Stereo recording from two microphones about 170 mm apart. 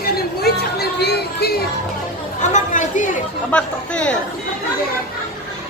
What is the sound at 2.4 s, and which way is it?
Speech, 45° left (ahead or behind).